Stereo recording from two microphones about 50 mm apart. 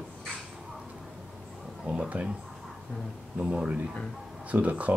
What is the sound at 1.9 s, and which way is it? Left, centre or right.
Speech, right.